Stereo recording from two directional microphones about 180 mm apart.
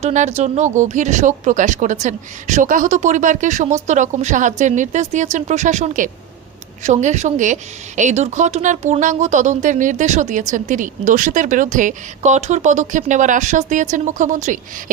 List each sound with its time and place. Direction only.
0.0 s speech: 40° right (ahead or behind)